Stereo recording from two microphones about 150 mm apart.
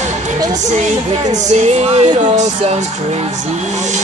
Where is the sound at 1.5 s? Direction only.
45° right (ahead or behind).